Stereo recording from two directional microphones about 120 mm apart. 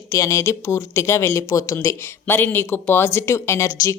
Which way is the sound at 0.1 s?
25° left (ahead or behind).